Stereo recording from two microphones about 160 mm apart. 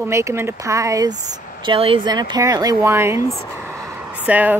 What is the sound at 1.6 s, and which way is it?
Speech, 35° right (ahead or behind).